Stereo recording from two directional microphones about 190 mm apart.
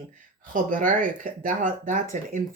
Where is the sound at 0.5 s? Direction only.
45° right (ahead or behind).